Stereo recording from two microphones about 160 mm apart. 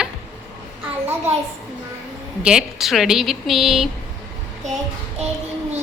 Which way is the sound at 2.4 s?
5° right (ahead or behind).